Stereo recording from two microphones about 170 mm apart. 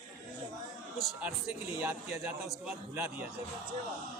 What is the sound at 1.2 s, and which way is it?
A man's voice, 10° right (ahead or behind).